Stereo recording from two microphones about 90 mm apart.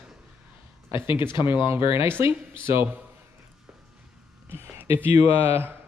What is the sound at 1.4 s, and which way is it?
Speech, 25° right (ahead or behind).